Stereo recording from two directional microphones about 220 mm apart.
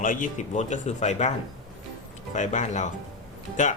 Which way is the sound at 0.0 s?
40° left (ahead or behind).